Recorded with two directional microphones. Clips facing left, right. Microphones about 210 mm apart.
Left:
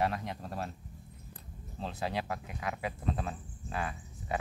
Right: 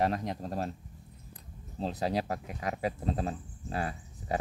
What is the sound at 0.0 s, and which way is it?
Speech, 40° right (ahead or behind).